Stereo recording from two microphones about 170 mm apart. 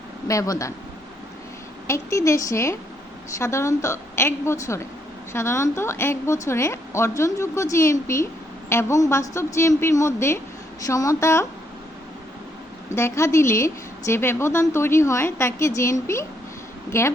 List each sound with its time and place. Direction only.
0.3 s speech: 20° left (ahead or behind)
1.9 s a woman's voice: 15° left (ahead or behind)
13.0 s a woman's voice: 15° left (ahead or behind)